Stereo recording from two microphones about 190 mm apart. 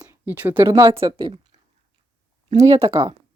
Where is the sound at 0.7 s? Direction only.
25° right (ahead or behind).